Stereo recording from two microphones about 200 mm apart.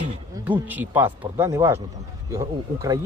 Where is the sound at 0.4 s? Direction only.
10° right (ahead or behind).